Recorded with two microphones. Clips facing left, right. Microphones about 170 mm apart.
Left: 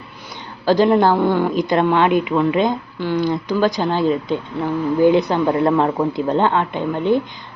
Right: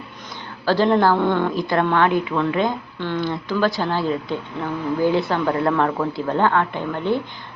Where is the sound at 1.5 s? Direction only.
20° left (ahead or behind).